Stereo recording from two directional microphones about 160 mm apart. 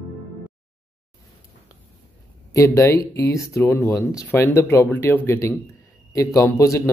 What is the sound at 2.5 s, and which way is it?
A man's voice, 20° left (ahead or behind).